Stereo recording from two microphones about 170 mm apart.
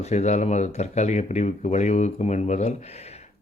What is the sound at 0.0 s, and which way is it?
Speech, 40° left (ahead or behind).